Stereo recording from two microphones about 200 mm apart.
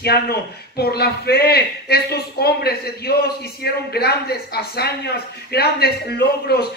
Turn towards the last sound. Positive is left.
turn(degrees=55)  # may be behind; listen again after turning